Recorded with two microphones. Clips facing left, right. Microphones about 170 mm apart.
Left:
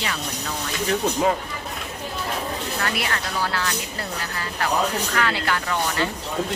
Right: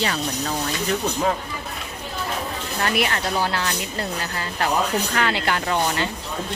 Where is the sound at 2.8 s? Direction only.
25° right (ahead or behind).